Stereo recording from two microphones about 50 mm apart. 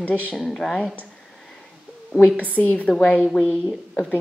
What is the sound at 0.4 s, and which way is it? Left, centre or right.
Speech, centre.